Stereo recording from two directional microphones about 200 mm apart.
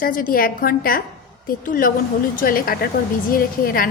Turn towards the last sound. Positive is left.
turn(degrees=45)  # may be behind; listen again after turning